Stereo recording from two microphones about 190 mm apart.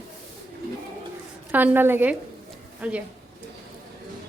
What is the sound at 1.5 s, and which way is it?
A woman's voice, 10° right (ahead or behind).